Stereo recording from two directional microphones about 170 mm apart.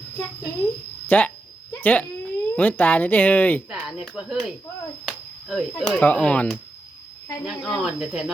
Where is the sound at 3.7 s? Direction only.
5° right (ahead or behind).